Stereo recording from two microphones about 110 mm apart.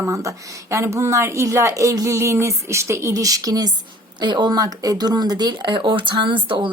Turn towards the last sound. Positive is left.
turn(degrees=-50)  # may be behind; listen again after turning